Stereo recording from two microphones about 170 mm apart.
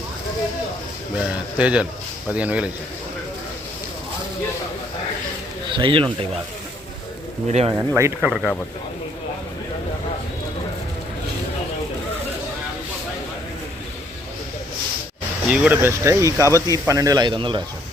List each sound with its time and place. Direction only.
1.2 s speech: 5° right (ahead or behind)
5.7 s speech: 30° right (ahead or behind)
7.4 s speech: 40° right (ahead or behind)
7.8 s speech: 15° right (ahead or behind)
15.4 s speech: 10° right (ahead or behind); by 17.6 s 30° right (ahead or behind)